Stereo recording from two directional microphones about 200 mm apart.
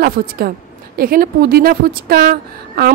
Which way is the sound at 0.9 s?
45° right (ahead or behind).